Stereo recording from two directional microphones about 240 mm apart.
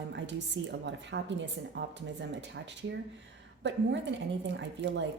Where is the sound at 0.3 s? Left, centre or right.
Right.